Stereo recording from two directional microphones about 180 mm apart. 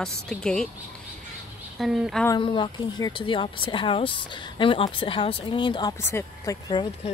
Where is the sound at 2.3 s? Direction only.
25° left (ahead or behind).